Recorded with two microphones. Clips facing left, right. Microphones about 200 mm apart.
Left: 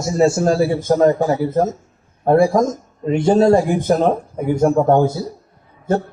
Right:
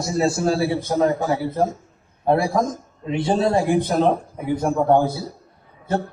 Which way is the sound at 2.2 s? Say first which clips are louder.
Left 6 dB; 45° left (ahead or behind).